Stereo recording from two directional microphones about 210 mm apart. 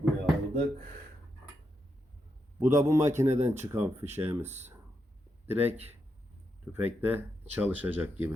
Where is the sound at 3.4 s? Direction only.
35° right (ahead or behind).